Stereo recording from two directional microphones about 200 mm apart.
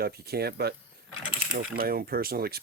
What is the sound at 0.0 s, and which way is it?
Speech, 50° right (ahead or behind).